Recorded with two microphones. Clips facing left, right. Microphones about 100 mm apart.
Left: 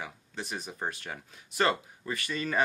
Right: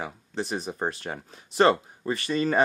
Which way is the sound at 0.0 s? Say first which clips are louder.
Right 8 dB; 30° right (ahead or behind).